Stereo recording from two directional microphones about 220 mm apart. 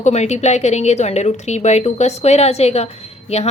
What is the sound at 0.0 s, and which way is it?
A woman's voice, 30° left (ahead or behind).